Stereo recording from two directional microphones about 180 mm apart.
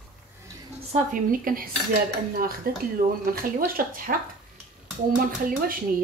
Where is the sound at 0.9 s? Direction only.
50° right (ahead or behind).